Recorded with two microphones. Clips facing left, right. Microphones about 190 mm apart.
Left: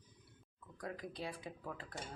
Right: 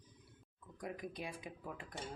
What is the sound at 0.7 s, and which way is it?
Speech, 20° right (ahead or behind).